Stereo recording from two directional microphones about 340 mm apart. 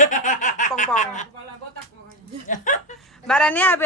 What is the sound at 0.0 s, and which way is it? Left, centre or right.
Chuckle, left.